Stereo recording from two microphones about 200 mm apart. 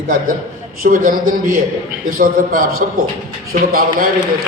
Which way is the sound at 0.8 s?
45° right (ahead or behind).